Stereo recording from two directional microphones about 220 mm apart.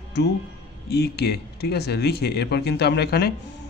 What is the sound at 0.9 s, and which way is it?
Speech, 45° left (ahead or behind).